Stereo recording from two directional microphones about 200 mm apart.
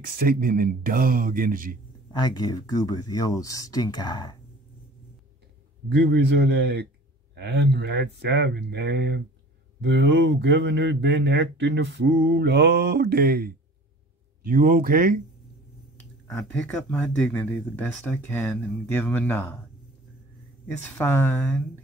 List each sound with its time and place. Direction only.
0.0 s speech: 45° right (ahead or behind)
2.1 s speech: 20° left (ahead or behind)
5.9 s speech: 55° right (ahead or behind)
16.3 s speech: 5° left (ahead or behind)
20.6 s speech: 10° left (ahead or behind)